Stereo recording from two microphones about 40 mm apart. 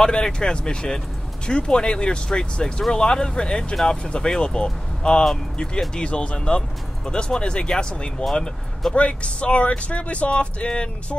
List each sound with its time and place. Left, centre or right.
0.0 s speech: centre